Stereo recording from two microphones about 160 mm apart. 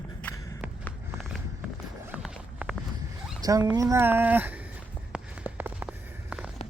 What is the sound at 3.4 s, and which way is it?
Speech, 20° right (ahead or behind).